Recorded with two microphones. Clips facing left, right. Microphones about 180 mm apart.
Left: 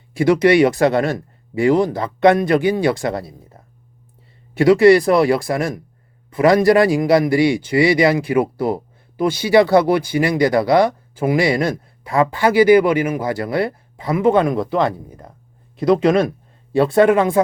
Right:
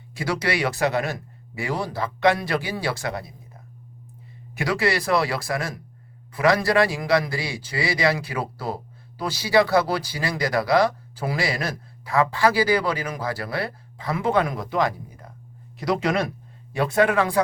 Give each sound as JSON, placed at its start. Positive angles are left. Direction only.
{"t": 0.1, "sound": "a man's voice", "side_deg": 25}
{"t": 2.0, "sound": "a man's voice", "side_deg": 25}